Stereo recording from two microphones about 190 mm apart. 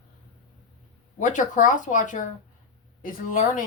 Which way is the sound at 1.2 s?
40° left (ahead or behind).